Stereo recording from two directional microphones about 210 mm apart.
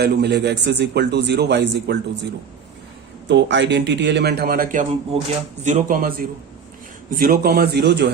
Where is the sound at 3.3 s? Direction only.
60° right (ahead or behind).